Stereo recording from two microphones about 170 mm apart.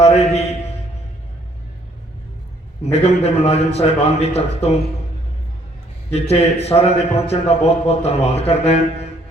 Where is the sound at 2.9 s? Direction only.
35° left (ahead or behind).